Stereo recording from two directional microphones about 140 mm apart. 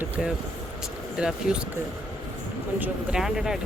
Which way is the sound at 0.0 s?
5° right (ahead or behind).